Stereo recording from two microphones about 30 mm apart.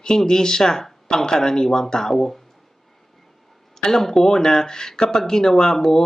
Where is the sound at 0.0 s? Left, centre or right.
Left.